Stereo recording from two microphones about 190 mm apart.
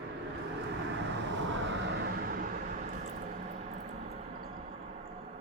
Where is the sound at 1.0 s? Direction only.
70° right (ahead or behind); by 2.9 s 45° right (ahead or behind).